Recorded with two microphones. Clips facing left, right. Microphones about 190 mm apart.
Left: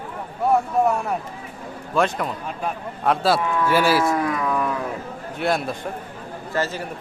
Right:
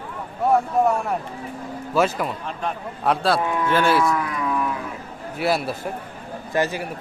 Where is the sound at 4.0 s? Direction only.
25° left (ahead or behind).